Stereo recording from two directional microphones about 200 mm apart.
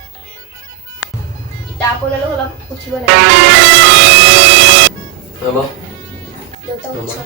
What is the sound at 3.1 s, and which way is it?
Music, 60° right (ahead or behind).